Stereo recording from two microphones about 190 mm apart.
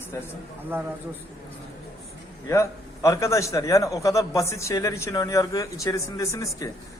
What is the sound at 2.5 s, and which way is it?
A man's voice, 15° left (ahead or behind).